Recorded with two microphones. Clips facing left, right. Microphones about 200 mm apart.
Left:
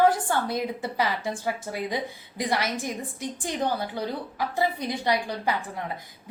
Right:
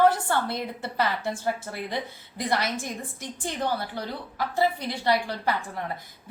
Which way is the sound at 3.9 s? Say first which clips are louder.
Left 2 dB; 15° left (ahead or behind).